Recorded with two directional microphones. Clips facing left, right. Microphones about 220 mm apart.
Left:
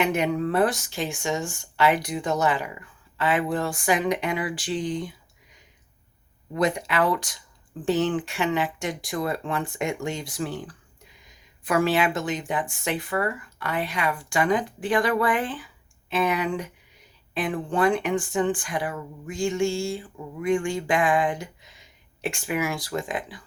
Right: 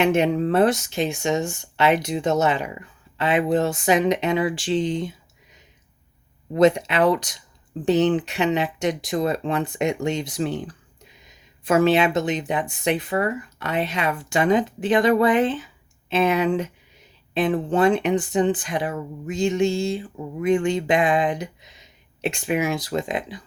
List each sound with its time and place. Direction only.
0.0 s speech: 25° right (ahead or behind)
6.5 s speech: 25° right (ahead or behind)